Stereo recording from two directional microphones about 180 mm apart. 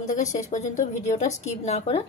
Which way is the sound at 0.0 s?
40° left (ahead or behind).